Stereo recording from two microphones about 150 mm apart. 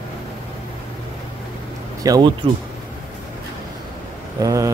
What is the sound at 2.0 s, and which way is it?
Speech, 30° right (ahead or behind).